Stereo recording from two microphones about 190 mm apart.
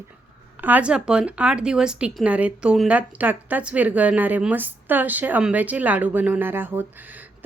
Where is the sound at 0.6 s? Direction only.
5° right (ahead or behind).